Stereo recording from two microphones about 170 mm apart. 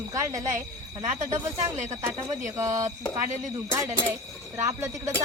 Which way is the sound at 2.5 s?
20° right (ahead or behind).